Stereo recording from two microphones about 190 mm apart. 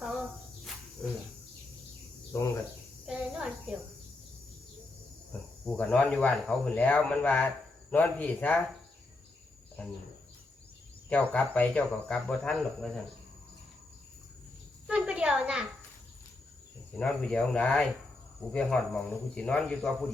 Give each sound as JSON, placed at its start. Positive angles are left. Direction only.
{"t": 2.3, "sound": "speech", "side_deg": 15}
{"t": 3.1, "sound": "cricket", "side_deg": -5}
{"t": 5.3, "sound": "speech", "side_deg": 5}
{"t": 9.8, "sound": "cricket", "side_deg": 5}
{"t": 11.1, "sound": "speech", "side_deg": 10}
{"t": 14.8, "sound": "a sound", "side_deg": -5}
{"t": 17.0, "sound": "a man's voice", "side_deg": 5}